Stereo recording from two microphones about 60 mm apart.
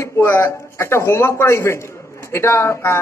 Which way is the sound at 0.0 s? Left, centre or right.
Left.